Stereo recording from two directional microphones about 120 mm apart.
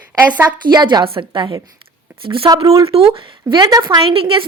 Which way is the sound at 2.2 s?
50° right (ahead or behind).